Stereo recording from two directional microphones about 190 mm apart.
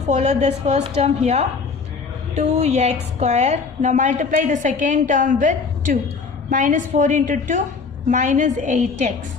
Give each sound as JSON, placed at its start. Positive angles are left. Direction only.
{"t": 0.1, "sound": "a woman's voice", "side_deg": -35}